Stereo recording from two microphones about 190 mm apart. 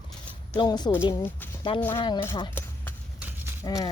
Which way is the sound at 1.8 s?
10° left (ahead or behind).